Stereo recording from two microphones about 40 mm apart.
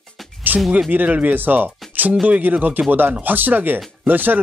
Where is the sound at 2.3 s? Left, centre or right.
Right.